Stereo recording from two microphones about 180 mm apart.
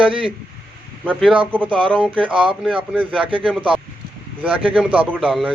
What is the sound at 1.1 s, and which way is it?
Speech, centre (ahead or behind).